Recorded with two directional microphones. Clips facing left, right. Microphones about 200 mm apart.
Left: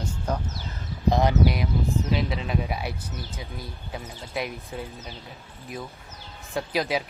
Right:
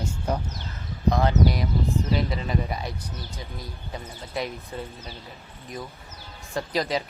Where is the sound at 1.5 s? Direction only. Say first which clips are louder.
Even; centre (ahead or behind).